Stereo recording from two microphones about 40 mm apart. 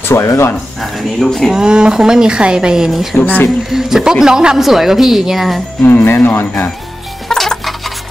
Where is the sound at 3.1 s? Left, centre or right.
Left.